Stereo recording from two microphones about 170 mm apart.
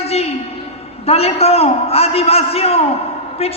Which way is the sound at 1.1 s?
35° left (ahead or behind).